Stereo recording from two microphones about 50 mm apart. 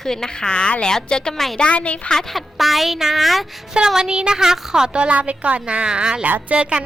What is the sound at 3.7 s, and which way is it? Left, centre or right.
A woman's voice, centre.